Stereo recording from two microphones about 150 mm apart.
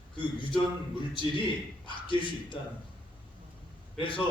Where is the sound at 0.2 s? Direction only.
30° left (ahead or behind).